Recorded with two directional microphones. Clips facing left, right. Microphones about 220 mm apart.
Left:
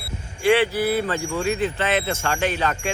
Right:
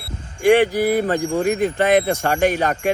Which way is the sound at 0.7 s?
15° right (ahead or behind).